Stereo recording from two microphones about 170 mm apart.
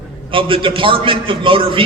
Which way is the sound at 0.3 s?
30° right (ahead or behind).